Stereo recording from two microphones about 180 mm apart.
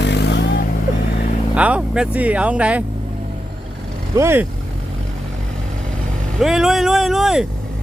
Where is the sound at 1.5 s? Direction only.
5° right (ahead or behind).